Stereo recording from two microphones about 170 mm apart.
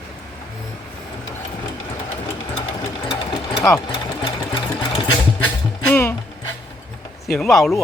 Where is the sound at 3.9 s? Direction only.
30° left (ahead or behind).